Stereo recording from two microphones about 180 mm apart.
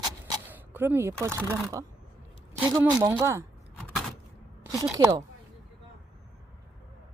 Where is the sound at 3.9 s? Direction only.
Centre (ahead or behind).